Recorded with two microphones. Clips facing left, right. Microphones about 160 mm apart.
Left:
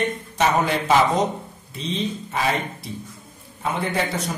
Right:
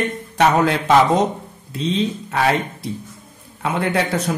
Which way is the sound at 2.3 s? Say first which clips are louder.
Right 5 dB; 70° right (ahead or behind).